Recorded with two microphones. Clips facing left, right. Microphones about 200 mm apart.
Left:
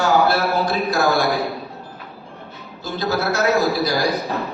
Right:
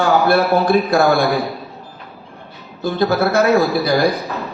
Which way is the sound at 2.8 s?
55° right (ahead or behind).